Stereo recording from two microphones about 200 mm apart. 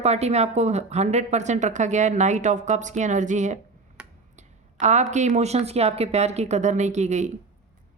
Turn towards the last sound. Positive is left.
turn(degrees=-35)  # may be behind; listen again after turning